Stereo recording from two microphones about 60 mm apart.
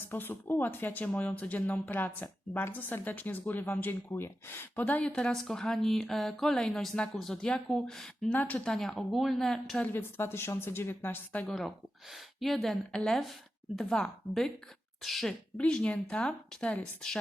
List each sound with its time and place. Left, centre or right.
0.1 s speech: left; by 5.3 s centre
5.3 s a woman's voice: centre
8.3 s speech: left
8.6 s speech: centre
9.9 s speech: left
11.4 s speech: centre
12.9 s a woman's voice: centre
15.0 s speech: centre
15.5 s a woman's voice: centre